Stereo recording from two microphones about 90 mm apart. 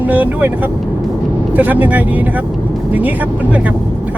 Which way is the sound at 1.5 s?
20° right (ahead or behind).